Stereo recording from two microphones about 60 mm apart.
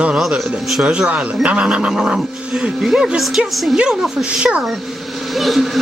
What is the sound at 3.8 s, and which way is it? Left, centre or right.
Speech, centre.